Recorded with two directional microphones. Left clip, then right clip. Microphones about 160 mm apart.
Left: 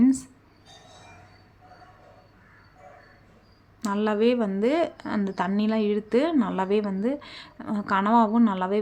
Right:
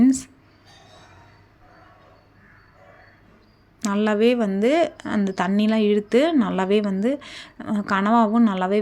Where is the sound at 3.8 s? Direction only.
15° right (ahead or behind).